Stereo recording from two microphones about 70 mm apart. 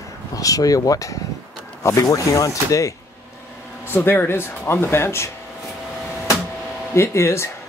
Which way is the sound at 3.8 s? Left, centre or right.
Left.